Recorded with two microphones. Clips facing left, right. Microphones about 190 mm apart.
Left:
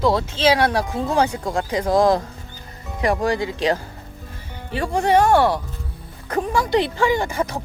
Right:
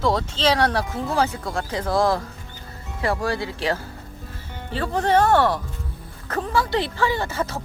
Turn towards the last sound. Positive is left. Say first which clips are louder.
# left 4 dB
turn(degrees=15)  # may be behind; listen again after turning